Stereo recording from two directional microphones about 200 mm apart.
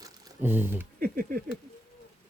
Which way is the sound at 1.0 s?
45° right (ahead or behind).